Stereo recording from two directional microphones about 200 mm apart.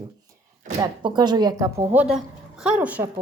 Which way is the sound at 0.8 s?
20° right (ahead or behind).